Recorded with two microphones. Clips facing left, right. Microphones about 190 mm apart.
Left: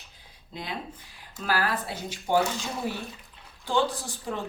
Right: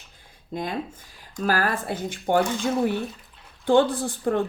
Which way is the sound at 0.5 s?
50° right (ahead or behind).